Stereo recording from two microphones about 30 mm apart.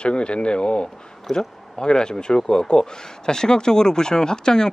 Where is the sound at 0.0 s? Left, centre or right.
Left.